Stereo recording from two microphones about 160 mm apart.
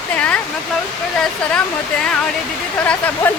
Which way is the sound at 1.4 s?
5° left (ahead or behind).